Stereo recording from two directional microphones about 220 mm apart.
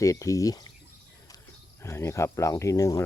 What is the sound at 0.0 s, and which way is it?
Speech, 15° left (ahead or behind).